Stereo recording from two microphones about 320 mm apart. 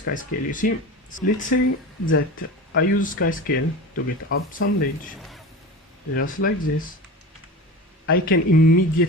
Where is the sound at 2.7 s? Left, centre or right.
Left.